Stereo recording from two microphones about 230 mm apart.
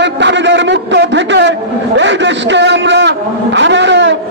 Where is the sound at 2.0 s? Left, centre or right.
Right.